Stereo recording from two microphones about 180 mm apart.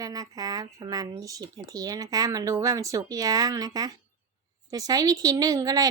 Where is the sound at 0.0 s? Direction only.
20° right (ahead or behind).